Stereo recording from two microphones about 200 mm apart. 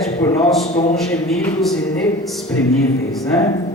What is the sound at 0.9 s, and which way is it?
Speech, centre (ahead or behind).